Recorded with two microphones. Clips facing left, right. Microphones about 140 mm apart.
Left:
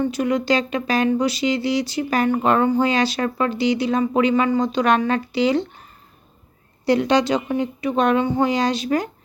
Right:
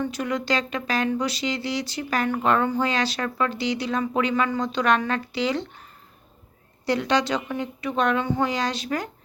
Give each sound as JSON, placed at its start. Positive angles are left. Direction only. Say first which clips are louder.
{"t": 0.1, "sound": "speech", "louder": "left 6 dB", "side_deg": 15}
{"t": 6.8, "sound": "speech", "louder": "left 5 dB", "side_deg": 15}